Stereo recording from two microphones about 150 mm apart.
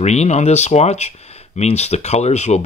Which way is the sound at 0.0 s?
50° left (ahead or behind).